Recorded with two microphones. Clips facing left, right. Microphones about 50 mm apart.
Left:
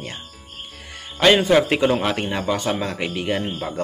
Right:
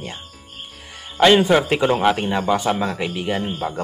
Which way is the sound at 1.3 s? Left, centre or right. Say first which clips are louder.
Right 1 dB; centre.